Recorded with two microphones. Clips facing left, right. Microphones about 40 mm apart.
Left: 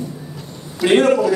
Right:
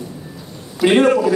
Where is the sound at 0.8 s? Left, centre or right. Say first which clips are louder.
Right 1 dB; centre.